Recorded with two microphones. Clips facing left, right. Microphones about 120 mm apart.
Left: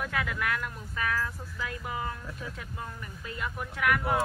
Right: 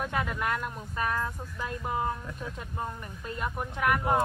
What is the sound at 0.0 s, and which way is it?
Speech, 20° right (ahead or behind).